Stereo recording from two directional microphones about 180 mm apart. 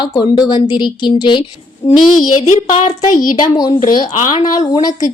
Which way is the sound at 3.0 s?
50° left (ahead or behind).